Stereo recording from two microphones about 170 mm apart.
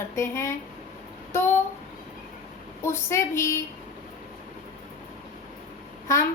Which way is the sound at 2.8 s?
15° left (ahead or behind).